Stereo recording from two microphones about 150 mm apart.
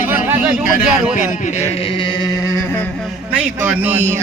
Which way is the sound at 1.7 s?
40° left (ahead or behind).